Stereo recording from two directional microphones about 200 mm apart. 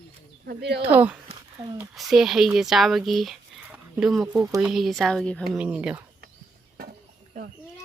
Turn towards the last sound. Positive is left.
turn(degrees=-5)  # may be behind; listen again after turning